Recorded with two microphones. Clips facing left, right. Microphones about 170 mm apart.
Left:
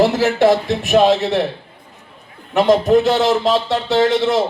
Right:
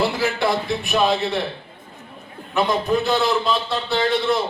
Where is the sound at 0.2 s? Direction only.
90° left.